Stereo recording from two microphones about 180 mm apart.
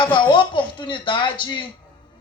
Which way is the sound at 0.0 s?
25° left (ahead or behind).